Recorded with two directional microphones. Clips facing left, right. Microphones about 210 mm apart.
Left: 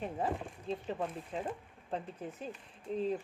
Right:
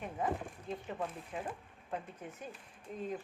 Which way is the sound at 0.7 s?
25° left (ahead or behind).